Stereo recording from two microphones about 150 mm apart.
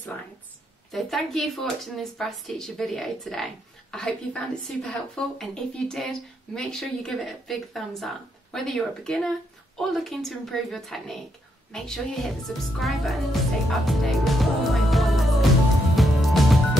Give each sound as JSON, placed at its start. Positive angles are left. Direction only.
{"t": 0.9, "sound": "speech", "side_deg": 0}
{"t": 13.8, "sound": "music", "side_deg": 0}